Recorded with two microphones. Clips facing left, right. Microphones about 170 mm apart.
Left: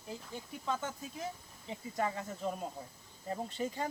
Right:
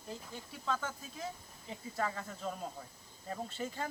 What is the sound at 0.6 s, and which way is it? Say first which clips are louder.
Speech: even; 15° left (ahead or behind).